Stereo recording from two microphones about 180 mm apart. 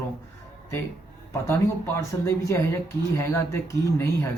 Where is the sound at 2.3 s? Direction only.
15° left (ahead or behind).